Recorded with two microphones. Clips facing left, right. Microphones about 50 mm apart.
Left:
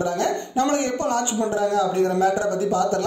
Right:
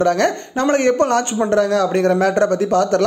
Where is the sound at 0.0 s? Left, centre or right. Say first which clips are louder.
Right 7 dB; right.